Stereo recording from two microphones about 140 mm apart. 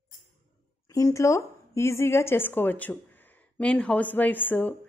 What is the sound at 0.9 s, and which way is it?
A woman's voice, 20° left (ahead or behind).